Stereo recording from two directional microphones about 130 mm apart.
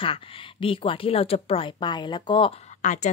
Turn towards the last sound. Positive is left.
turn(degrees=70)  # may be behind; listen again after turning